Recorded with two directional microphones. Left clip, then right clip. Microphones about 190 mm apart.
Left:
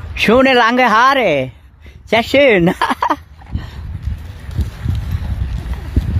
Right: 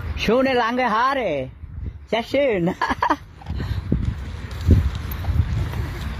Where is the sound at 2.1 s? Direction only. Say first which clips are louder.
Left 9 dB; 40° left (ahead or behind); by 3.6 s 15° left (ahead or behind).